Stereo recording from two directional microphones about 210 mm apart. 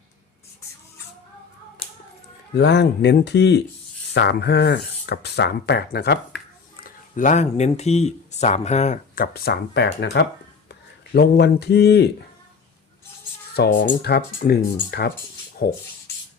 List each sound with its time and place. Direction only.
2.6 s speech: 55° left (ahead or behind)
6.8 s speech: 35° left (ahead or behind)
13.5 s speech: 55° left (ahead or behind)